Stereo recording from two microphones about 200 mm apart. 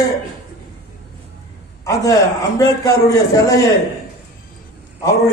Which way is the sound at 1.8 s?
15° left (ahead or behind).